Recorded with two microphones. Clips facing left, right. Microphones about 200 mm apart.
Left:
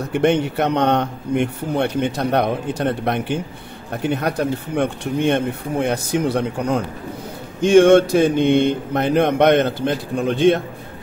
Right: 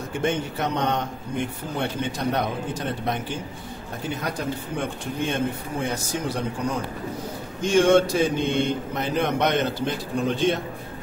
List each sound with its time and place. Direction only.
0.1 s speech: 65° left (ahead or behind)